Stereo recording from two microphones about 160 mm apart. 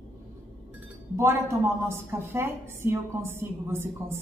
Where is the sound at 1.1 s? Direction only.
15° right (ahead or behind).